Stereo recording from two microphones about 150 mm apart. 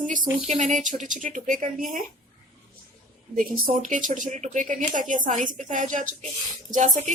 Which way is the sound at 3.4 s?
60° right (ahead or behind).